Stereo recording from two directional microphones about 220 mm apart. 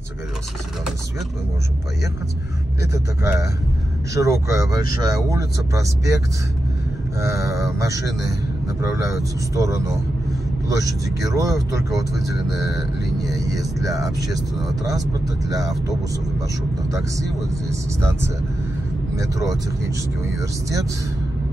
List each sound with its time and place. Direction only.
2.9 s speech: 10° right (ahead or behind)
7.2 s speech: 15° right (ahead or behind)
8.8 s speech: 15° right (ahead or behind)
12.4 s vehicle: centre (ahead or behind)
13.2 s speech: 15° right (ahead or behind)
17.6 s speech: 10° right (ahead or behind)